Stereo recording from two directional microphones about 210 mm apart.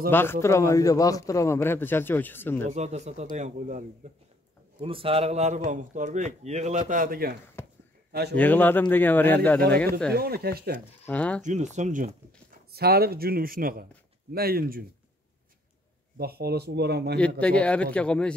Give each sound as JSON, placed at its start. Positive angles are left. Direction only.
{"t": 0.1, "sound": "a man's voice", "side_deg": 10}
{"t": 2.7, "sound": "a man's voice", "side_deg": -35}
{"t": 7.6, "sound": "a sound", "side_deg": 10}
{"t": 8.1, "sound": "a man's voice", "side_deg": -50}
{"t": 8.4, "sound": "a man's voice", "side_deg": 10}
{"t": 10.1, "sound": "speech", "side_deg": -45}
{"t": 11.1, "sound": "a man's voice", "side_deg": 5}
{"t": 11.4, "sound": "speech", "side_deg": -35}
{"t": 12.7, "sound": "speech", "side_deg": -50}
{"t": 16.2, "sound": "speech", "side_deg": -50}
{"t": 17.4, "sound": "speech", "side_deg": 5}